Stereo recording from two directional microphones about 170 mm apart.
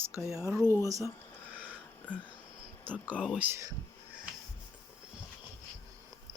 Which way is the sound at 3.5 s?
20° right (ahead or behind).